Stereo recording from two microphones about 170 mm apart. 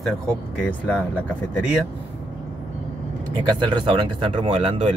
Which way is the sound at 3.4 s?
25° right (ahead or behind).